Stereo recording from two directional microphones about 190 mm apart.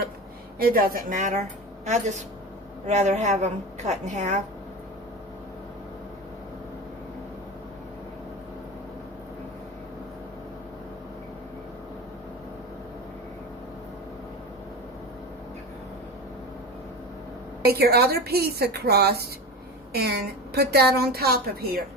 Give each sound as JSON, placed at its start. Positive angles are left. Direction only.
{"t": 0.6, "sound": "a woman's voice", "side_deg": -50}
{"t": 17.7, "sound": "a woman's voice", "side_deg": -55}